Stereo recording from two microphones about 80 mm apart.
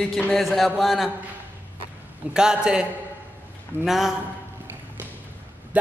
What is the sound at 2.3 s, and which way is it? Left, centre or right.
Speech, centre.